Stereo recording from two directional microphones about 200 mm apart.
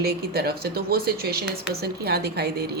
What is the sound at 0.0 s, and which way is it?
Speech, 50° right (ahead or behind).